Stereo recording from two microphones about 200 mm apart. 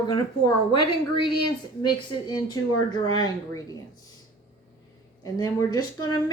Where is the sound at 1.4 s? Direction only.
20° left (ahead or behind).